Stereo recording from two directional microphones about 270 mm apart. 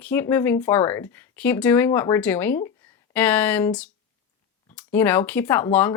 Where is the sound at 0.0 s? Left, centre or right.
Centre.